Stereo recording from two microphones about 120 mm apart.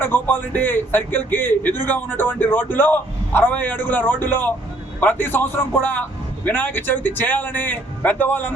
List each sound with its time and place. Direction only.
0.0 s a man's voice: 20° left (ahead or behind)